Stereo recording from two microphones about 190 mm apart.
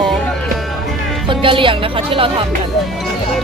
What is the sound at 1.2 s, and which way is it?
Music, 25° right (ahead or behind).